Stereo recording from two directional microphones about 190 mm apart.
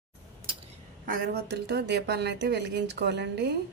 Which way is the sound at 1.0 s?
55° right (ahead or behind).